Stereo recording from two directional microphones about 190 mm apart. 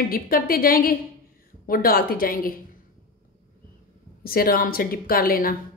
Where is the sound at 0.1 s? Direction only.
50° left (ahead or behind).